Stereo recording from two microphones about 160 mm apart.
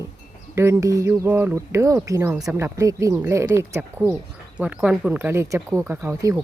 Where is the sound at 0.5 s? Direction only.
15° right (ahead or behind).